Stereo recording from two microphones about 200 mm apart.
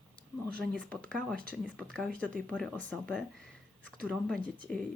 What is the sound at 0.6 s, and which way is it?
Speech, 5° left (ahead or behind).